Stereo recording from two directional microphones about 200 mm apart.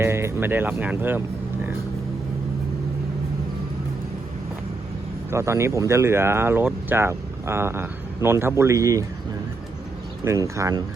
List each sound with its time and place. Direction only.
0.0 s speech: 15° right (ahead or behind)
5.3 s speech: 15° right (ahead or behind)
10.2 s speech: 15° right (ahead or behind)